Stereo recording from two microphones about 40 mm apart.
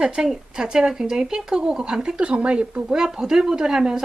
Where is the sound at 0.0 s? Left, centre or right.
Centre.